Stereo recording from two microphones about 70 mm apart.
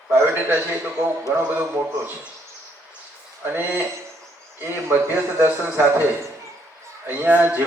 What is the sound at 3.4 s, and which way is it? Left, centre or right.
A man's voice, right.